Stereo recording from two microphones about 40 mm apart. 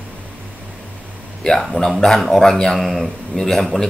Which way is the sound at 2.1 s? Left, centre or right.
Centre.